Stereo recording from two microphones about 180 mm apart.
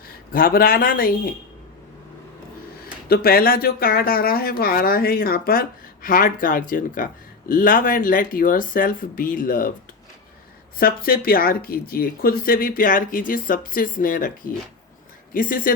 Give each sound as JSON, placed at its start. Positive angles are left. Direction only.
{"t": 0.3, "sound": "speech", "side_deg": 55}
{"t": 2.8, "sound": "speech", "side_deg": 55}
{"t": 10.8, "sound": "speech", "side_deg": 55}